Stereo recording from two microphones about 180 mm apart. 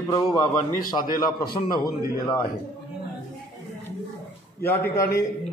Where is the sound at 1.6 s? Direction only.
20° left (ahead or behind).